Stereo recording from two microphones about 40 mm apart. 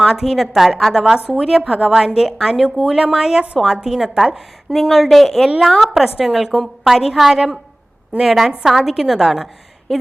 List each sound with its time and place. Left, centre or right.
0.0 s a woman's voice: centre
4.7 s speech: centre
5.8 s a woman's voice: centre